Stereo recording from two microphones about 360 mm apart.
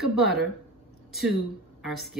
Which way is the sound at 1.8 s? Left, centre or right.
Centre.